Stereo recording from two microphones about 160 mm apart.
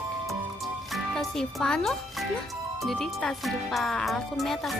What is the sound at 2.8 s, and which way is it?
Speech, centre (ahead or behind).